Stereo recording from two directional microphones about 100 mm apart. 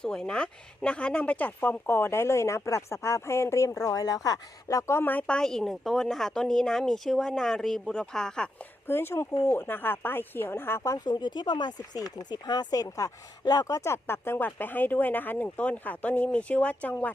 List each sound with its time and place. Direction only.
0.0 s speech: 5° left (ahead or behind)
5.2 s speech: 5° left (ahead or behind)
8.9 s speech: 20° left (ahead or behind)
10.9 s speech: 45° left (ahead or behind); by 16.9 s 15° left (ahead or behind)